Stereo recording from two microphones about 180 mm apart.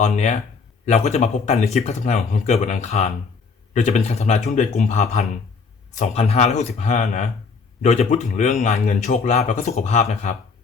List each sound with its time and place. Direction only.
0.0 s a man's voice: 40° left (ahead or behind)